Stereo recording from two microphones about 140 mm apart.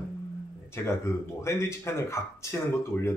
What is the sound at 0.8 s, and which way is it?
Speech, 20° left (ahead or behind).